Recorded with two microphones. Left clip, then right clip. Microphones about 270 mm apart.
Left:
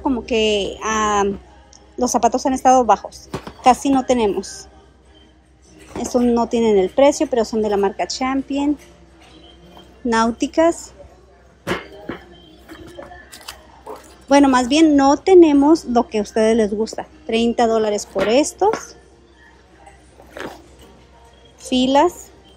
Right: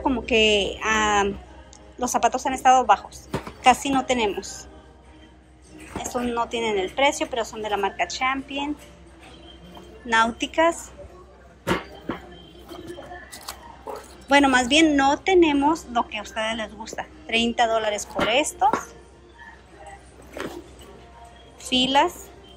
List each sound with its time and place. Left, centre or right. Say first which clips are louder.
0.0 s speech: left 1 dB; centre
3.3 s music: right 3 dB; centre
3.6 s speech: left 4 dB; centre
5.9 s a woman's voice: left 8 dB; left
10.0 s a woman's voice: left 3 dB; centre
14.3 s a woman's voice: left 3 dB; centre
21.5 s a woman's voice: left 4 dB; centre